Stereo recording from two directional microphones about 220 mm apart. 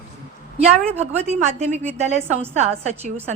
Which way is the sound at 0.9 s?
30° right (ahead or behind).